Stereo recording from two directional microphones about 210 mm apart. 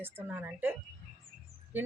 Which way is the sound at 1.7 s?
10° right (ahead or behind).